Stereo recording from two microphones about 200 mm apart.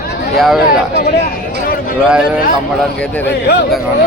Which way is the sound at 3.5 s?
55° left (ahead or behind).